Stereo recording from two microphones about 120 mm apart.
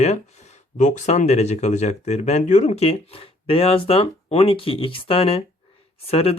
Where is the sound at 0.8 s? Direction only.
80° left.